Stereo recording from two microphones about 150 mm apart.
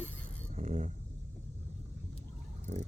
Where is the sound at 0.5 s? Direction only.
50° right (ahead or behind).